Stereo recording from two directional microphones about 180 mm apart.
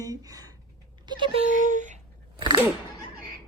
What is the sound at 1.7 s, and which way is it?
Speech, 45° right (ahead or behind).